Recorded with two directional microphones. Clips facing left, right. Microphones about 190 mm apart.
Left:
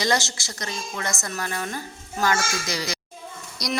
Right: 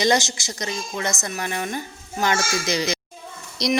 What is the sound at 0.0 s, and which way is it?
A woman's voice, 20° right (ahead or behind).